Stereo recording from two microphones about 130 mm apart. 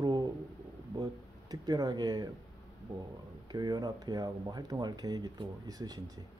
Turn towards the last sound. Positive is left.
turn(degrees=-30)  # may be behind; listen again after turning